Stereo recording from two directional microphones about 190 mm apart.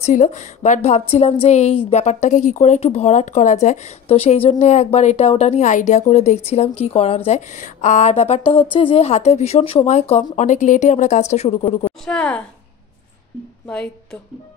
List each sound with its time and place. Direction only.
0.0 s a woman's voice: 40° left (ahead or behind)
12.0 s a woman's voice: 5° left (ahead or behind)